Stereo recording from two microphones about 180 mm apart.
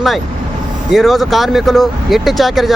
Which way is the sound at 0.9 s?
Centre (ahead or behind).